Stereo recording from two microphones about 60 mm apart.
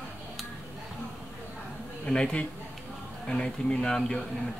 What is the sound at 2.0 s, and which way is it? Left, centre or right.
A man's voice, centre.